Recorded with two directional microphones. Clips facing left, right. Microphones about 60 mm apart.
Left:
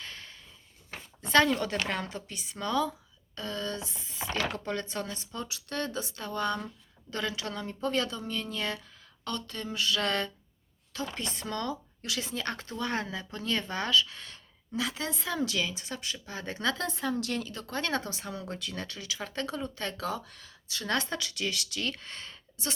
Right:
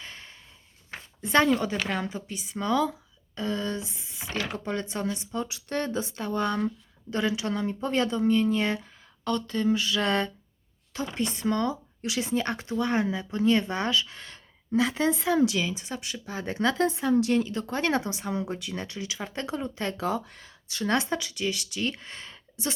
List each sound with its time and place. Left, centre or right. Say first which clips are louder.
0.0 s a sound: right 1 dB; right
1.3 s a woman's voice: right 2 dB; centre
4.2 s speech: even; left
4.5 s speech: right 3 dB; centre
11.2 s speech: right 7 dB; centre
11.4 s a woman's voice: right 7 dB; centre
15.4 s speech: right 4 dB; centre
21.2 s a woman's voice: right 3 dB; centre
21.8 s speech: right 4 dB; right